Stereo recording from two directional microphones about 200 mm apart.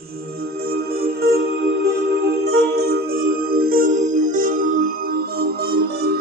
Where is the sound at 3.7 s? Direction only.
40° right (ahead or behind).